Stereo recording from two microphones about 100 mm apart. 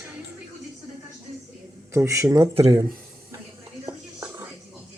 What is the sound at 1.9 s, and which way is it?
Speech, 30° right (ahead or behind).